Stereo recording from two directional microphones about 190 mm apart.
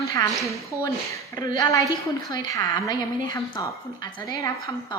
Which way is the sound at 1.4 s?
20° left (ahead or behind).